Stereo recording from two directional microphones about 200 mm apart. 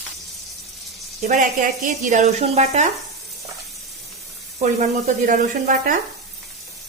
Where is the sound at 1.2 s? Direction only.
40° right (ahead or behind).